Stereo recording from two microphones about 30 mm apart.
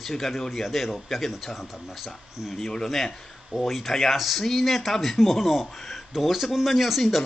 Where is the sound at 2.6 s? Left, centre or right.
Centre.